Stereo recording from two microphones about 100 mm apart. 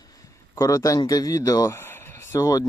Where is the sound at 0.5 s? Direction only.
30° left (ahead or behind).